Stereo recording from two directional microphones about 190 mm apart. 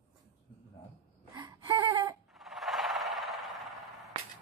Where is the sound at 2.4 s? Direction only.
Centre (ahead or behind).